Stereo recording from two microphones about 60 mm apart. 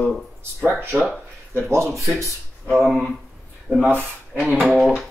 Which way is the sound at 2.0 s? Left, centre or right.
Right.